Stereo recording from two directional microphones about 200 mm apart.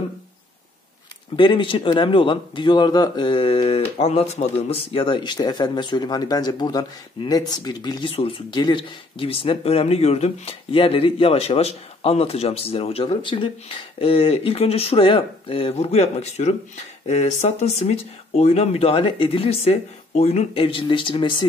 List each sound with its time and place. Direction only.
1.3 s a man's voice: 25° left (ahead or behind)